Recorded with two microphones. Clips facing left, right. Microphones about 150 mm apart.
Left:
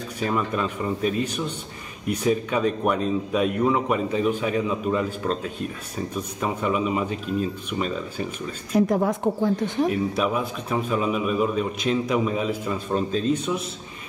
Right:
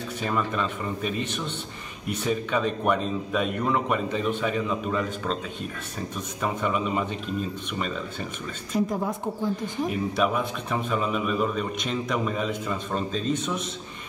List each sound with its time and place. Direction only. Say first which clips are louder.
0.2 s a man's voice: left 3 dB; 5° left (ahead or behind)
6.4 s a man's voice: left 2 dB; 5° left (ahead or behind)
8.7 s a woman's voice: left 6 dB; 70° left (ahead or behind)
10.1 s a man's voice: left 1 dB; centre (ahead or behind)